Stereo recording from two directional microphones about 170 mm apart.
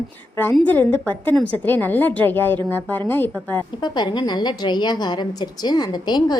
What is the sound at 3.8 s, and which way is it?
A woman's voice, 25° left (ahead or behind).